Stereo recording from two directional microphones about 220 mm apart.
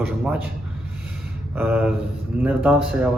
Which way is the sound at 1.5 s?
10° right (ahead or behind).